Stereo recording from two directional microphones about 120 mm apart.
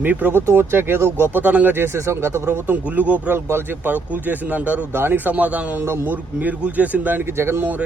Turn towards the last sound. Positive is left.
turn(degrees=-15)  # may be behind; listen again after turning